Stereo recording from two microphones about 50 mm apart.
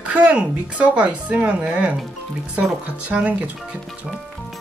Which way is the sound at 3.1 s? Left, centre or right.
Right.